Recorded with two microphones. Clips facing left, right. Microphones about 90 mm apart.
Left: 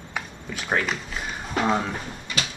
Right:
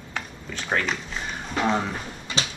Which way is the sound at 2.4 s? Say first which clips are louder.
Right 1 dB; 30° right (ahead or behind).